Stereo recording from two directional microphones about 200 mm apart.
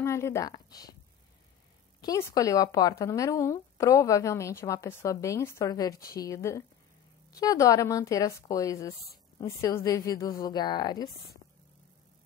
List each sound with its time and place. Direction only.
0.0 s a woman's voice: 15° left (ahead or behind)
2.0 s speech: 15° left (ahead or behind)